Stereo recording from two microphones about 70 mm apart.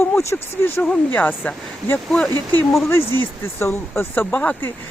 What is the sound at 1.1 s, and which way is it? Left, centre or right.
Speech, left.